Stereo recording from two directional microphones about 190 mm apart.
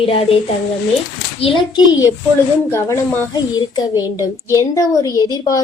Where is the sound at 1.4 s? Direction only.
25° left (ahead or behind).